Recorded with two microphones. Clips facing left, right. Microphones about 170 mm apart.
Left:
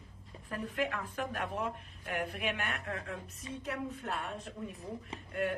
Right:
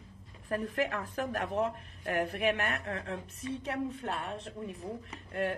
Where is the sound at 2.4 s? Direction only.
35° right (ahead or behind).